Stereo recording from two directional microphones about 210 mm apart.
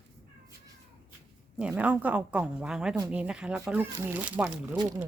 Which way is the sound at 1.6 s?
5° right (ahead or behind).